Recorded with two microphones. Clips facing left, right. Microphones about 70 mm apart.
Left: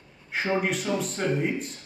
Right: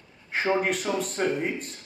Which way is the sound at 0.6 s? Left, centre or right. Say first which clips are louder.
Right 1 dB; centre.